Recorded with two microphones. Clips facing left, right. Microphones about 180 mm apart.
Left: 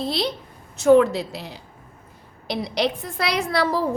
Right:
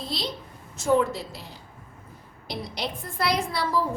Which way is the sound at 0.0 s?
65° left (ahead or behind).